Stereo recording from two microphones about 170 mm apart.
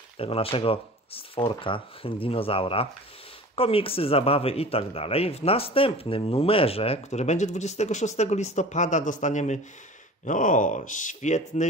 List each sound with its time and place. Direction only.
0.2 s speech: 35° left (ahead or behind)